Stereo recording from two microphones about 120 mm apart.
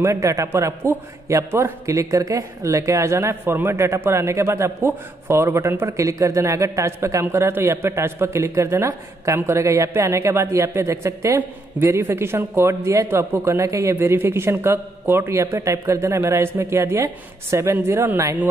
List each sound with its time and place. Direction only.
0.0 s a man's voice: 25° right (ahead or behind)